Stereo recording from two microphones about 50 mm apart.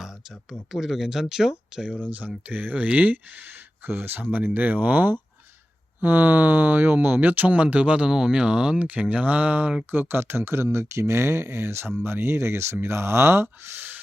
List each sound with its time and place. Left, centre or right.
0.5 s speech: centre
2.0 s speech: right
8.9 s speech: right
9.9 s speech: right